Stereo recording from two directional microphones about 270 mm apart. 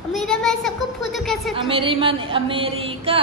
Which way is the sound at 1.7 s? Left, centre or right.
Centre.